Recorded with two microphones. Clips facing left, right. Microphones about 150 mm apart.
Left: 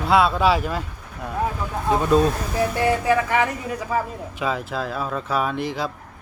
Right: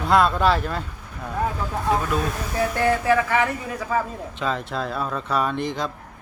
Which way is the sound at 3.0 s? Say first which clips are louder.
Even; 20° left (ahead or behind).